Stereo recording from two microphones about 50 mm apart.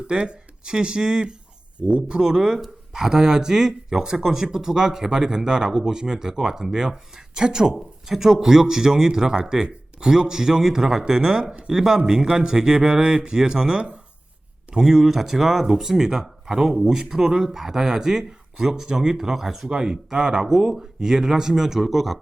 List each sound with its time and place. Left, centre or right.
0.1 s speech: right